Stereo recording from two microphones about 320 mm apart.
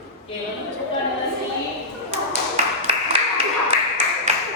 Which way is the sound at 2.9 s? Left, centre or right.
Centre.